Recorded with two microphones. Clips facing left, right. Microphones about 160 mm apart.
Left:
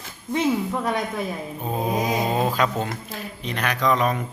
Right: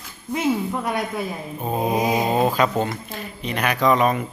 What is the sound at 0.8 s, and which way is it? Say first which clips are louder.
Speech: even; 10° right (ahead or behind).